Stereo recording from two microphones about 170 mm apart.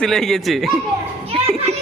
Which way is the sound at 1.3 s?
35° right (ahead or behind).